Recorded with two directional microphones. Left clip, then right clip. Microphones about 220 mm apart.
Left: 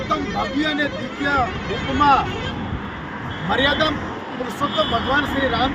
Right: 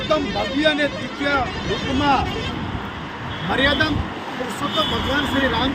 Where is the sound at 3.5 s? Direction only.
5° right (ahead or behind).